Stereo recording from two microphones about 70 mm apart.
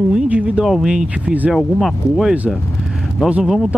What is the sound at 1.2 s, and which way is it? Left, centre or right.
Speech, right.